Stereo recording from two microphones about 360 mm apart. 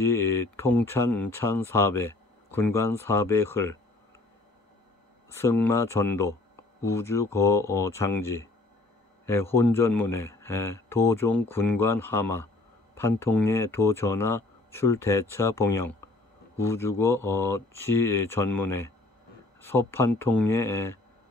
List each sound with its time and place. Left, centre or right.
0.0 s speech: centre
5.3 s speech: centre